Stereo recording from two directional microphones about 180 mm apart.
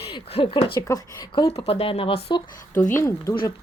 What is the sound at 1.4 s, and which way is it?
Speech, 35° left (ahead or behind).